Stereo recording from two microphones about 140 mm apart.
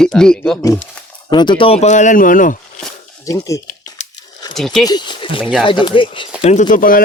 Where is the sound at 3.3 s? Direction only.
25° left (ahead or behind).